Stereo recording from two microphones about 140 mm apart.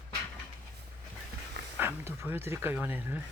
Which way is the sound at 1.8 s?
15° right (ahead or behind).